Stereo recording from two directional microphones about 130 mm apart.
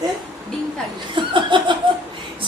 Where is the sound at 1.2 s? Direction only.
40° right (ahead or behind).